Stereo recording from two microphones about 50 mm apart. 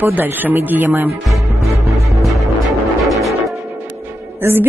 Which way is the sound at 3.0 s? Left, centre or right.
Centre.